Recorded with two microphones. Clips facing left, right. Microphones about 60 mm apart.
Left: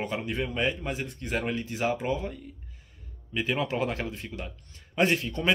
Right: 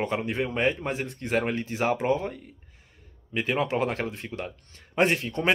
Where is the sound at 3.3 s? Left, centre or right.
Right.